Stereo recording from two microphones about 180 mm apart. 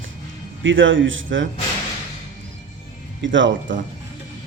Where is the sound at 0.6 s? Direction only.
90° right.